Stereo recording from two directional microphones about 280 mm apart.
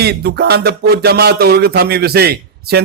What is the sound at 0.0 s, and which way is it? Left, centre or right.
Music, right.